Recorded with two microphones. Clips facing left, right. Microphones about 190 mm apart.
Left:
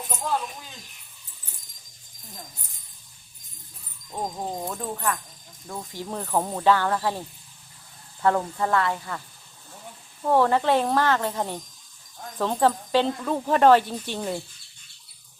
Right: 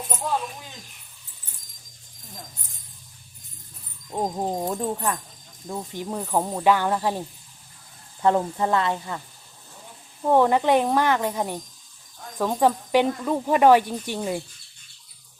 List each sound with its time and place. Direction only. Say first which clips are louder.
4.1 s speech: right 5 dB; 25° right (ahead or behind)
10.2 s speech: right 2 dB; 15° right (ahead or behind)